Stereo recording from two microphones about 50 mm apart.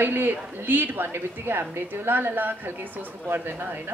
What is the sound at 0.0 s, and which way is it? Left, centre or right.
A woman's voice, right.